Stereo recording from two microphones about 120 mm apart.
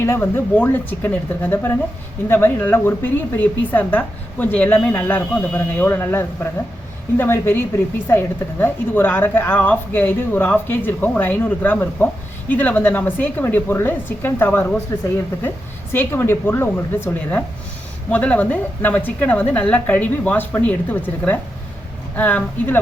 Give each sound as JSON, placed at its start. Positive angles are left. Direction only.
{"t": 0.0, "sound": "a woman's voice", "side_deg": 20}